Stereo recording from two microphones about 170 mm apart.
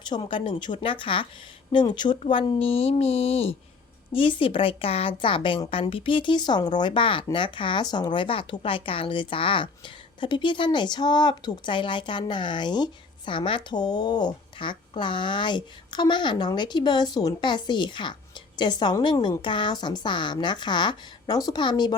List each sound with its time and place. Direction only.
0.1 s speech: 30° left (ahead or behind)